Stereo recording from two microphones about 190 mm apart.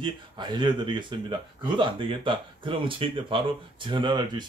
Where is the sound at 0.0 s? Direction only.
25° right (ahead or behind).